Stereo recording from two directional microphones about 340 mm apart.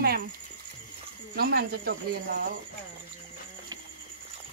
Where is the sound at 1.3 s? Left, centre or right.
Right.